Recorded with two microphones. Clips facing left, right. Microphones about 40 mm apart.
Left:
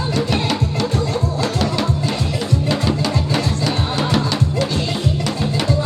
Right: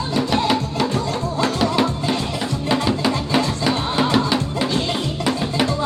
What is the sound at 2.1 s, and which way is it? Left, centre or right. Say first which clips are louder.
Music: even; right.